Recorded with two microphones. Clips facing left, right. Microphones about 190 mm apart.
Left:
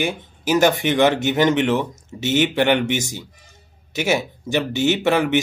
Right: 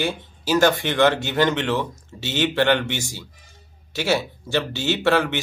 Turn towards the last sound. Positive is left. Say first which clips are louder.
# left 2 dB
turn(degrees=15)  # may be behind; listen again after turning